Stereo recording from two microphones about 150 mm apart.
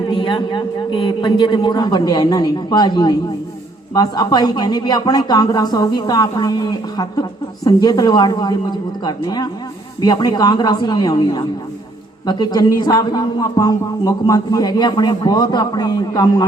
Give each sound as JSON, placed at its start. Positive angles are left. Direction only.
{"t": 0.1, "sound": "speech", "side_deg": 30}